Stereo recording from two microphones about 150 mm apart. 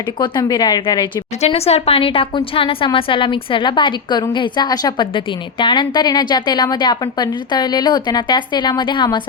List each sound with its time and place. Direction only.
0.2 s speech: 30° left (ahead or behind)
1.4 s a woman's voice: 45° left (ahead or behind)